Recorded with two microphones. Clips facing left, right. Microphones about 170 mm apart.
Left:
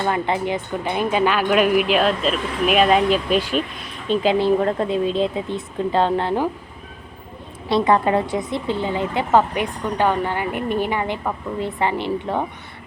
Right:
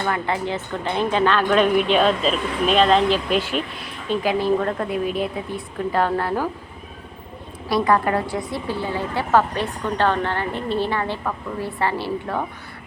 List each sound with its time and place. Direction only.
0.0 s a woman's voice: 20° left (ahead or behind)
7.7 s a woman's voice: 25° left (ahead or behind)